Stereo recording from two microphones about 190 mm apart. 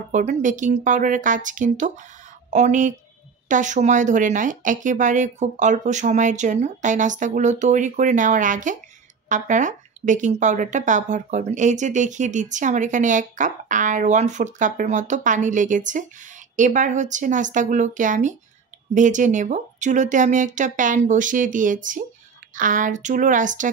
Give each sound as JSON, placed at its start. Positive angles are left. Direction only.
{"t": 0.1, "sound": "a woman's voice", "side_deg": -40}